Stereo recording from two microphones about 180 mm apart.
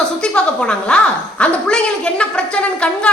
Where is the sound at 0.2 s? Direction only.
5° left (ahead or behind).